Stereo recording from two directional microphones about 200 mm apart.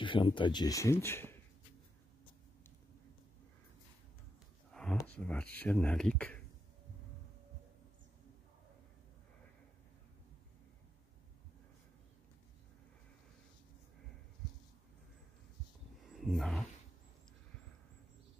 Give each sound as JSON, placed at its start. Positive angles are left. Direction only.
{"t": 0.0, "sound": "speech", "side_deg": 25}
{"t": 5.0, "sound": "speech", "side_deg": 5}
{"t": 16.2, "sound": "speech", "side_deg": 0}